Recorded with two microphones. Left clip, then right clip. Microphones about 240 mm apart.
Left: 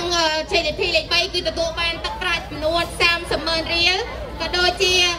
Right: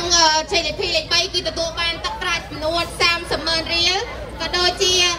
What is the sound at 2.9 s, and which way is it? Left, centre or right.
Child singing, centre.